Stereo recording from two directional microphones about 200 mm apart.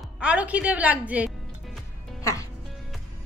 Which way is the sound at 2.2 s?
15° left (ahead or behind).